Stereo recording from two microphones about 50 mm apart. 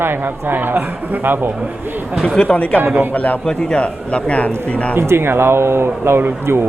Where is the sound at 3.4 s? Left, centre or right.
Centre.